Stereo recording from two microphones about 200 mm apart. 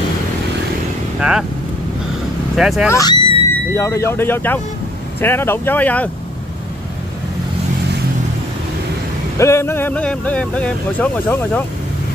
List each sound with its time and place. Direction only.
2.5 s speech: 5° right (ahead or behind)
2.9 s speech: 20° left (ahead or behind)
9.4 s speech: 15° left (ahead or behind)